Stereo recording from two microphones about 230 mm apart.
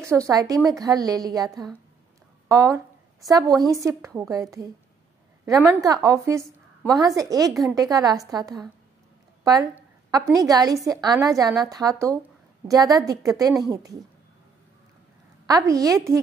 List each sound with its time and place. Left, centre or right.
0.0 s a woman's voice: centre
6.0 s a woman's voice: centre
15.4 s a woman's voice: centre